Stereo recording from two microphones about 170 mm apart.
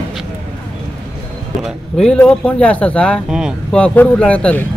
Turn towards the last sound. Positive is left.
turn(degrees=5)  # may be behind; listen again after turning